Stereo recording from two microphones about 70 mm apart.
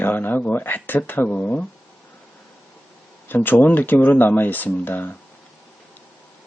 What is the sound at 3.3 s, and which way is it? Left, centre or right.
Speech, left.